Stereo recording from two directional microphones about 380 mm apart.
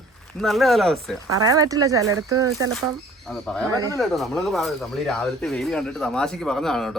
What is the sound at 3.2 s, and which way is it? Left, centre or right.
Speech, centre.